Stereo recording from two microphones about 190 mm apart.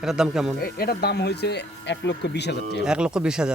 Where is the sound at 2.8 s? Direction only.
5° right (ahead or behind).